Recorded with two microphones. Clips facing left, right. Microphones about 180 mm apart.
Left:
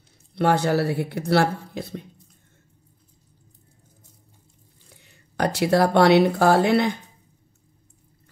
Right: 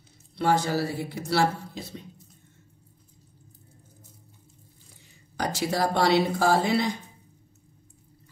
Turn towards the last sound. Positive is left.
turn(degrees=60)  # may be behind; listen again after turning